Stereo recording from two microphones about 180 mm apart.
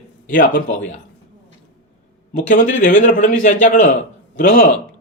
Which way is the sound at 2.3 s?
45° left (ahead or behind).